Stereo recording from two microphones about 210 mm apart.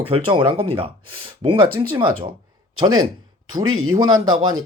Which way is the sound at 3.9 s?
15° right (ahead or behind).